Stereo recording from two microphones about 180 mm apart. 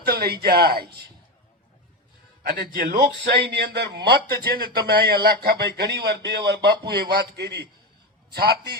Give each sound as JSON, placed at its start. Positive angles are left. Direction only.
{"t": 0.0, "sound": "a man's voice", "side_deg": -60}
{"t": 2.5, "sound": "speech", "side_deg": -55}